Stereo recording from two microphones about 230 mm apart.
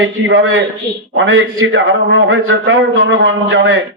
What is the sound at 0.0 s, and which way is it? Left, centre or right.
A man's voice, right.